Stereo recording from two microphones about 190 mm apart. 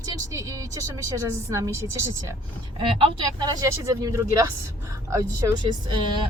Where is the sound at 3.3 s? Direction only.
20° right (ahead or behind).